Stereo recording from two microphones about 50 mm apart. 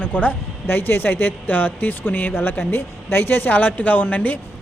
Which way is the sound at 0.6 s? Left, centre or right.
Left.